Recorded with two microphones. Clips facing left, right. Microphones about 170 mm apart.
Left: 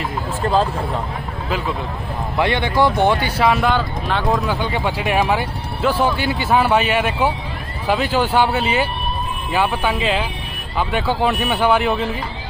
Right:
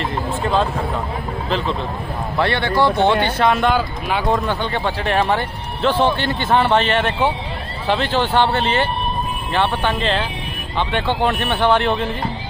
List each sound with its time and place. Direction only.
2.3 s speech: 15° left (ahead or behind)